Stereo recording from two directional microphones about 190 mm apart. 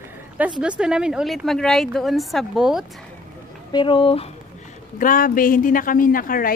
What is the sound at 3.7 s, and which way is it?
Speech, 25° left (ahead or behind).